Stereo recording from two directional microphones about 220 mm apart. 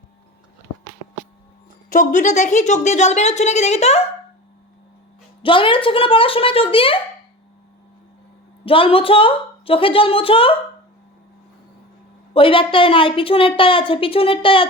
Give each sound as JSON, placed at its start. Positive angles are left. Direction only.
{"t": 1.9, "sound": "a woman's voice", "side_deg": 35}
{"t": 5.4, "sound": "a woman's voice", "side_deg": 25}
{"t": 8.6, "sound": "a woman's voice", "side_deg": 25}
{"t": 12.3, "sound": "a woman's voice", "side_deg": 25}